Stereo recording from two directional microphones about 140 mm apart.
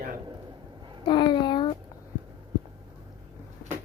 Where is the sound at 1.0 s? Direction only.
35° left (ahead or behind).